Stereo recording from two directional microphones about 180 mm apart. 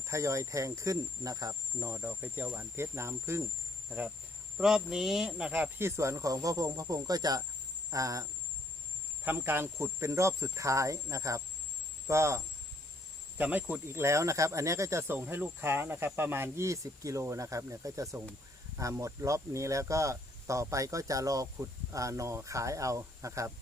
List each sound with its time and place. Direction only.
0.1 s speech: 15° right (ahead or behind)
7.9 s cricket: 20° right (ahead or behind)
9.2 s speech: 10° right (ahead or behind)
13.4 s speech: 10° right (ahead or behind)